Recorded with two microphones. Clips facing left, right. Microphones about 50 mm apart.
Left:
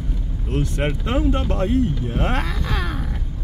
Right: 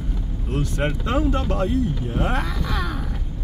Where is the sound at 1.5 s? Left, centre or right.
Left.